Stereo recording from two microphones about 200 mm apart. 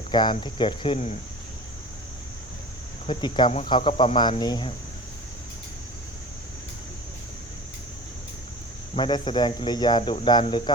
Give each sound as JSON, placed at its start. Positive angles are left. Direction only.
{"t": 0.1, "sound": "speech", "side_deg": 20}
{"t": 3.1, "sound": "speech", "side_deg": 20}
{"t": 9.0, "sound": "speech", "side_deg": 25}